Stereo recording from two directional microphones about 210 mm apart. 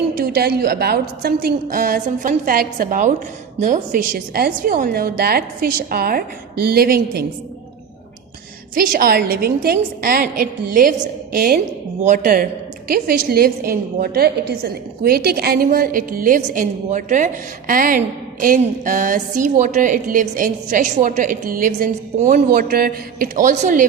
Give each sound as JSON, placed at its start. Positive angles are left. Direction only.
{"t": 0.1, "sound": "a woman's voice", "side_deg": -45}
{"t": 8.7, "sound": "a woman's voice", "side_deg": -40}